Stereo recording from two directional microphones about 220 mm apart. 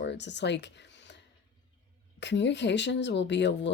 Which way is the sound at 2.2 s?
55° left (ahead or behind).